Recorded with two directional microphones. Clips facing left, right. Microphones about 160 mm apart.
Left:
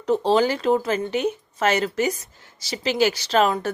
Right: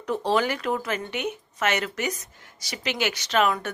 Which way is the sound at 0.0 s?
30° left (ahead or behind).